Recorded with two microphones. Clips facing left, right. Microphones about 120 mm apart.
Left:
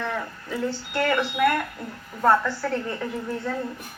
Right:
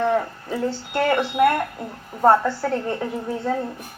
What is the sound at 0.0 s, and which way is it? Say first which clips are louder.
Speech: right 9 dB; 30° right (ahead or behind).